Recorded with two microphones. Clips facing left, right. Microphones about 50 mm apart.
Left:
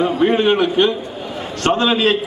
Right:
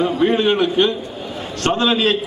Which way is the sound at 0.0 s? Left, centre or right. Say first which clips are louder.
Left 1 dB; left.